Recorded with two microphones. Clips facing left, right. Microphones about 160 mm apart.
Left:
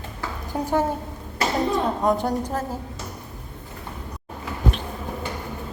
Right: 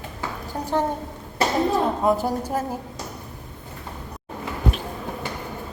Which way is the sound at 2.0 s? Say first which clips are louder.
Even; 5° right (ahead or behind).